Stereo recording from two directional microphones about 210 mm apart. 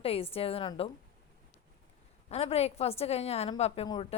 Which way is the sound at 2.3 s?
30° left (ahead or behind).